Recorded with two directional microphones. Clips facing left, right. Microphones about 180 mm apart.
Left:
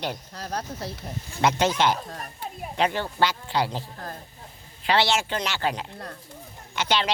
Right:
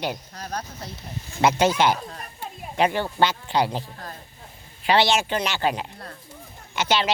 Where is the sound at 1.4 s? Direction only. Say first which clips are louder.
Right 3 dB; 10° right (ahead or behind).